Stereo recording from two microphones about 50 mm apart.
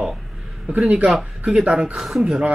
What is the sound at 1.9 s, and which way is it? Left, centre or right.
Speech, centre.